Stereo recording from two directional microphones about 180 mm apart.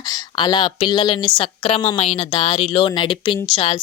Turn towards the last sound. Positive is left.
turn(degrees=30)  # may be behind; listen again after turning